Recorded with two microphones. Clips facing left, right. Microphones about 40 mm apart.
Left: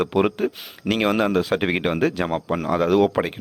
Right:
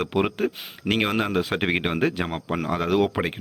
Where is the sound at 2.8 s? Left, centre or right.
Centre.